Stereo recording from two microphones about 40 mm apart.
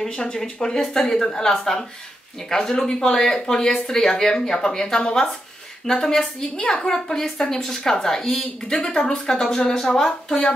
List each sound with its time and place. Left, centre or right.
0.2 s a woman's voice: centre